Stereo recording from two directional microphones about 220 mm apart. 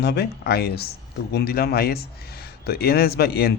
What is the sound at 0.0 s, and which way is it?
A man's voice, 50° left (ahead or behind).